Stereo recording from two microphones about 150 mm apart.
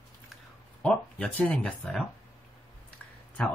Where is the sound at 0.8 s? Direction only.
10° left (ahead or behind).